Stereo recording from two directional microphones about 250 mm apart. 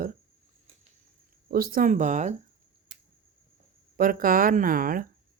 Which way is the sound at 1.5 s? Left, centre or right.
Right.